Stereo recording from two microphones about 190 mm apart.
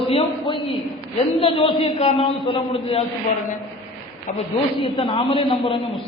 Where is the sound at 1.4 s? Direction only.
30° left (ahead or behind).